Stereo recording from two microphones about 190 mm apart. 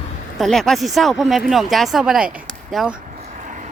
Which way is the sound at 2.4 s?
Centre (ahead or behind).